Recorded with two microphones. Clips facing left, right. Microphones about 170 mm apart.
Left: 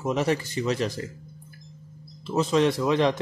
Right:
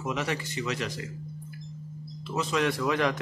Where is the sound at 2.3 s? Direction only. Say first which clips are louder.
Left 6 dB; 30° left (ahead or behind).